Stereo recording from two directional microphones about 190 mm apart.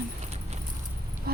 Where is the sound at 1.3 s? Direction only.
50° right (ahead or behind).